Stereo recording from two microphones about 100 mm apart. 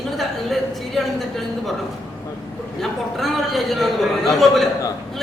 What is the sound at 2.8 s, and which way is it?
Speech, centre (ahead or behind).